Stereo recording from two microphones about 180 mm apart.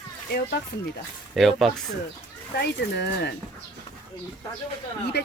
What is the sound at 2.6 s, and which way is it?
Speech, 65° left (ahead or behind).